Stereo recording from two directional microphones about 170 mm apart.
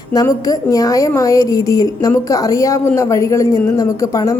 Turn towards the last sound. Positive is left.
turn(degrees=20)  # may be behind; listen again after turning